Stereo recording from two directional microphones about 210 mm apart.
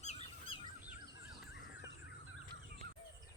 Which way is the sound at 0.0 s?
30° left (ahead or behind).